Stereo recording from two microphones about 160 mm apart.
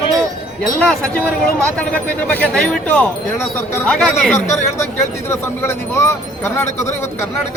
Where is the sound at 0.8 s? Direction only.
5° left (ahead or behind).